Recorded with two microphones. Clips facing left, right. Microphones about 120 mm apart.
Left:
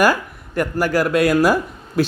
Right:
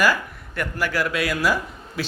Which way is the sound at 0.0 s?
45° left (ahead or behind).